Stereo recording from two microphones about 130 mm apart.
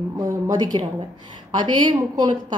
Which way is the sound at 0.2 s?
30° right (ahead or behind).